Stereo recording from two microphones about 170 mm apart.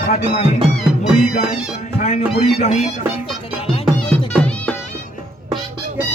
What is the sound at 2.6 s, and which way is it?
Speech, 40° left (ahead or behind).